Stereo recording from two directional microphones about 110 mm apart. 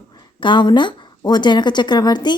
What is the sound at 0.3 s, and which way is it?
A woman's voice, 45° left (ahead or behind).